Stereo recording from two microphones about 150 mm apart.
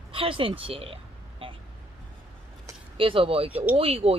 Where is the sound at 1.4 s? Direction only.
35° right (ahead or behind).